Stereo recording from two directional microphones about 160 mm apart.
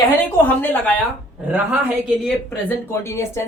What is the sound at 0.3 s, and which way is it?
Speech, 10° left (ahead or behind).